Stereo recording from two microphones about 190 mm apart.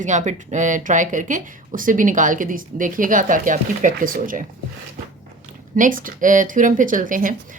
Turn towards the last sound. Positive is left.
turn(degrees=-45)  # may be behind; listen again after turning